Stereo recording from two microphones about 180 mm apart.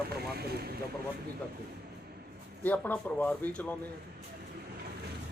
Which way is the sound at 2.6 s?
10° left (ahead or behind).